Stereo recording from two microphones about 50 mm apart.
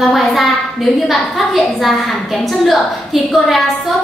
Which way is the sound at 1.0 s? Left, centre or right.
Centre.